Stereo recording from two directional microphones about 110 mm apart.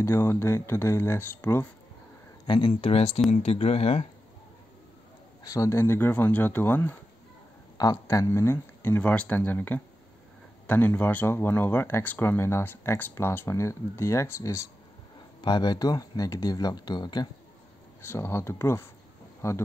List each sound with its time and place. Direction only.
0.0 s speech: 25° left (ahead or behind)
2.4 s speech: 50° left (ahead or behind); by 4.1 s 70° left (ahead or behind)
5.4 s speech: 30° left (ahead or behind)
7.7 s speech: 35° left (ahead or behind)
15.4 s speech: 40° left (ahead or behind)
18.0 s speech: 25° left (ahead or behind)